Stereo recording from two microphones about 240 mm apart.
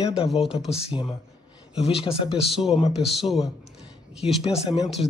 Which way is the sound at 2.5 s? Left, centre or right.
Centre.